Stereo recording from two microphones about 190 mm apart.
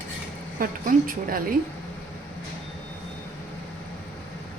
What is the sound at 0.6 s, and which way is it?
Speech, 45° right (ahead or behind).